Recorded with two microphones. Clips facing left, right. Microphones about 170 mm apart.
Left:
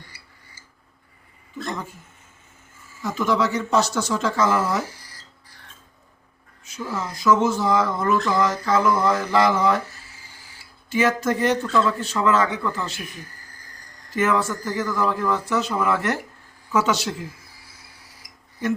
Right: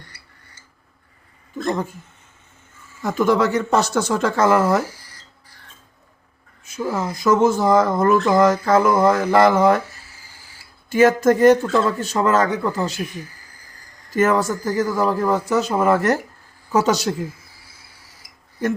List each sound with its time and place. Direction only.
1.5 s speech: 45° right (ahead or behind)
3.0 s speech: 50° right (ahead or behind)
6.7 s speech: 50° right (ahead or behind)
10.8 s speech: 50° right (ahead or behind)
14.1 s speech: 45° right (ahead or behind)